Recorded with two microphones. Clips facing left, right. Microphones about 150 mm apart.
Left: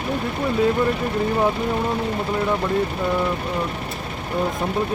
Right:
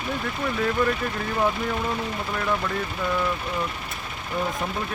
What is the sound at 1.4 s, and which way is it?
Speech, 25° left (ahead or behind).